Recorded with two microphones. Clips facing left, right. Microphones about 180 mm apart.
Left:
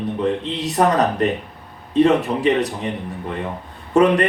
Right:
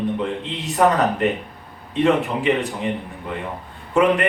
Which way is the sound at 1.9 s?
40° left (ahead or behind).